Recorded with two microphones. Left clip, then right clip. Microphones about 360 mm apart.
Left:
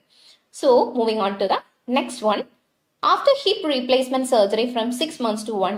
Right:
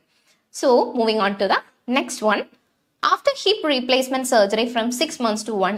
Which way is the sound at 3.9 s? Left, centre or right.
Right.